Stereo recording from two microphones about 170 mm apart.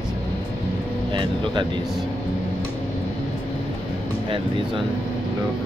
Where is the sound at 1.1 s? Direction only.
30° right (ahead or behind).